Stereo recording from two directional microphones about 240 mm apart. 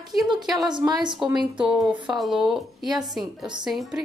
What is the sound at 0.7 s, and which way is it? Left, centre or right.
Speech, centre.